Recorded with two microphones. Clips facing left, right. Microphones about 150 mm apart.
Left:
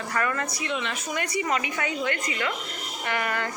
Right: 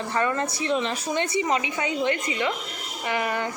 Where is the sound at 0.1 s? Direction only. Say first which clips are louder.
Right 3 dB; 25° right (ahead or behind).